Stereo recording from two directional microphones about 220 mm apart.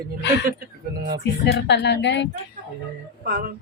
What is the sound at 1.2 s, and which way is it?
Speech, 55° left (ahead or behind).